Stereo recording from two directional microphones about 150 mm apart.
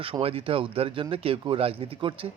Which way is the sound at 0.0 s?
40° right (ahead or behind).